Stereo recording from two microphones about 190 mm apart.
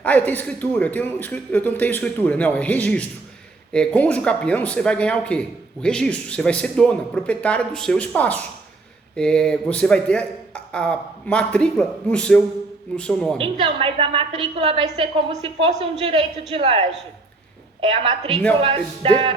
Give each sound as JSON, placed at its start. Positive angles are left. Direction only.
{"t": 0.0, "sound": "speech", "side_deg": 10}
{"t": 13.4, "sound": "a woman's voice", "side_deg": -30}